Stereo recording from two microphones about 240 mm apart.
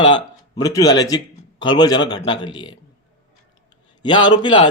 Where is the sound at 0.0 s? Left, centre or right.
Centre.